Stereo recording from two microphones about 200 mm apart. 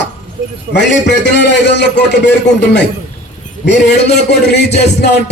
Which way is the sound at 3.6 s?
60° left (ahead or behind).